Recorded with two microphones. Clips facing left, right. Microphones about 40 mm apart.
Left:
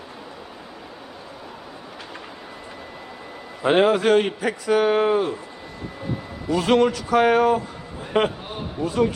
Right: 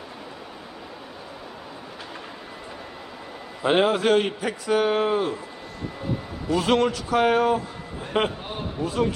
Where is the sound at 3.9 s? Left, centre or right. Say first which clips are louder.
Left 3 dB; left.